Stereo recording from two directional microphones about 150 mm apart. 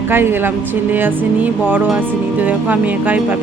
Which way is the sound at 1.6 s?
10° right (ahead or behind).